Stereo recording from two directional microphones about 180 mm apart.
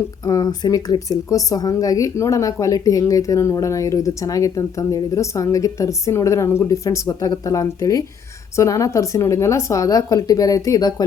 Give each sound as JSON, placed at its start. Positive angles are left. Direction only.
{"t": 0.3, "sound": "a woman's voice", "side_deg": 20}